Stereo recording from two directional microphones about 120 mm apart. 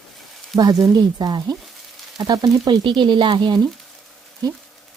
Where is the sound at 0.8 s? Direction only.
30° right (ahead or behind).